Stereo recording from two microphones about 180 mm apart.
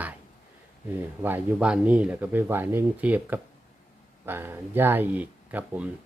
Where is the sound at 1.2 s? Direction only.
10° right (ahead or behind).